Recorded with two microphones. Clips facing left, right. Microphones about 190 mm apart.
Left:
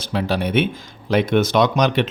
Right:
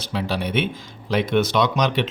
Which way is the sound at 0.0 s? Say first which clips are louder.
Left 4 dB; 50° left (ahead or behind).